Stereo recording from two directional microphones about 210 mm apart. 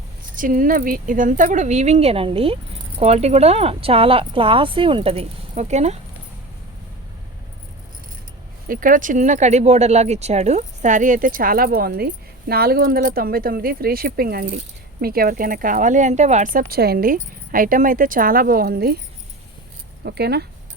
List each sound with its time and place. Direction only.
0.3 s speech: 40° right (ahead or behind)
8.6 s speech: 40° right (ahead or behind)
20.1 s speech: 50° right (ahead or behind)